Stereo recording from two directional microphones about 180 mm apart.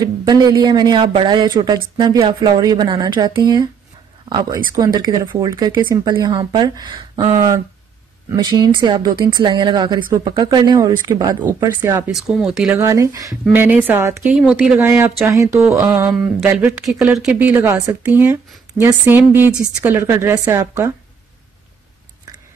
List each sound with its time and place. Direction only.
0.0 s speech: 20° right (ahead or behind)
4.7 s a woman's voice: 20° right (ahead or behind)
12.1 s speech: centre (ahead or behind)
12.8 s a woman's voice: 15° right (ahead or behind)
14.3 s a woman's voice: 5° right (ahead or behind)